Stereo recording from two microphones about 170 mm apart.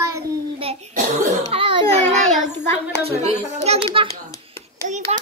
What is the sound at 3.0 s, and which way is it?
Speech, 40° right (ahead or behind).